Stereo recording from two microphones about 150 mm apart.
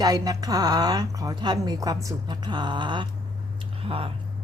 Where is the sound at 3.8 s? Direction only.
40° right (ahead or behind).